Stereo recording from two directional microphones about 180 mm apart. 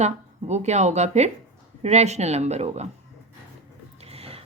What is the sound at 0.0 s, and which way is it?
Speech, 40° right (ahead or behind).